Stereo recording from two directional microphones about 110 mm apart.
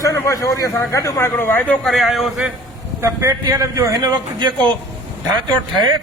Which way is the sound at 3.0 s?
25° right (ahead or behind).